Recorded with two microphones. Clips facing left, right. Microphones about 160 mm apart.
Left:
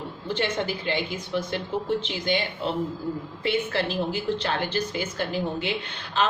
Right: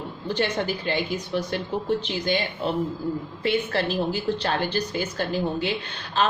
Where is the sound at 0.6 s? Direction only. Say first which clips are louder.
Right 1 dB; 40° right (ahead or behind).